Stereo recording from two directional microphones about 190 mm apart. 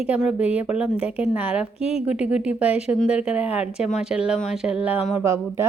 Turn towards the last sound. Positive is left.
turn(degrees=-15)  # may be behind; listen again after turning